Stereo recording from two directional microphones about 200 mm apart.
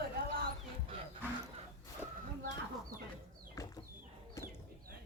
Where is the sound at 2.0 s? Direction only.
10° right (ahead or behind).